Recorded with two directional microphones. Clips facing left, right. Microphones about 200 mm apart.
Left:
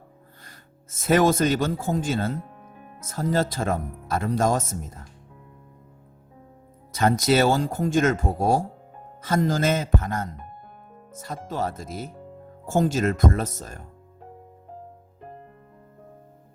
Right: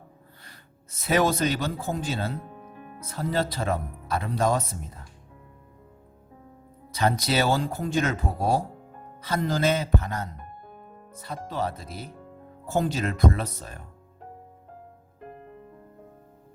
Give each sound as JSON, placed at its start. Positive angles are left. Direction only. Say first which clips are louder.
{"t": 0.4, "sound": "speech", "louder": "left 2 dB", "side_deg": 45}
{"t": 2.5, "sound": "music", "louder": "right 3 dB", "side_deg": 0}
{"t": 3.1, "sound": "speech", "louder": "left 3 dB", "side_deg": 45}
{"t": 6.9, "sound": "speech", "louder": "left 4 dB", "side_deg": 50}